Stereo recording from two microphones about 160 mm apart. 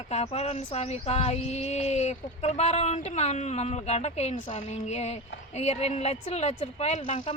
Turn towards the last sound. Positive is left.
turn(degrees=45)  # may be behind; listen again after turning